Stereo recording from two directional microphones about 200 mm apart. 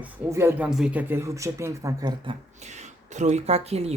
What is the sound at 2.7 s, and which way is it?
Speech, 35° right (ahead or behind).